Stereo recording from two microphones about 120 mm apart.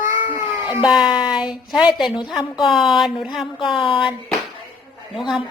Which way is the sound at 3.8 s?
45° left (ahead or behind).